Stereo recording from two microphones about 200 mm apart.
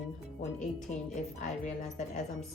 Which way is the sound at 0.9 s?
40° left (ahead or behind).